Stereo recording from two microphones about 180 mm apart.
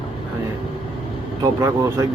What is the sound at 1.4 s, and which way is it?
Speech, 20° right (ahead or behind).